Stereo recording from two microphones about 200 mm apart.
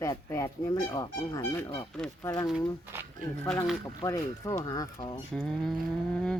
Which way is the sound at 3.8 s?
20° left (ahead or behind).